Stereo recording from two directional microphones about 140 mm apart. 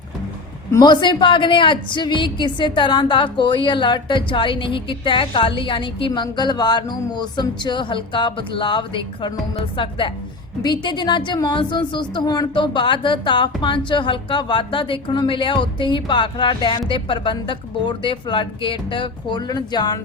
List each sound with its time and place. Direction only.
0.7 s a woman's voice: 30° left (ahead or behind)